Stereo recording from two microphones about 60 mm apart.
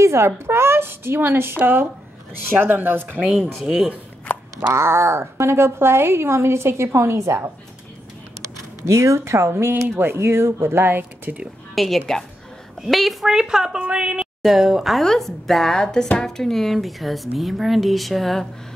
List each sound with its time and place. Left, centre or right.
0.0 s a woman's voice: right
3.6 s a woman's voice: centre
4.6 s a woman's voice: right
8.8 s a woman's voice: right
9.5 s speech: right
11.7 s a woman's voice: centre
13.3 s a woman's voice: centre
14.4 s speech: centre